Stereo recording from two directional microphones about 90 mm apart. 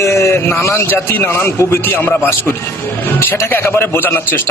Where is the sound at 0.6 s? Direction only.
30° left (ahead or behind).